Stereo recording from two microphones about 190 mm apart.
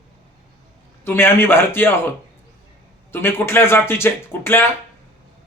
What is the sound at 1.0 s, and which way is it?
Speech, 10° left (ahead or behind).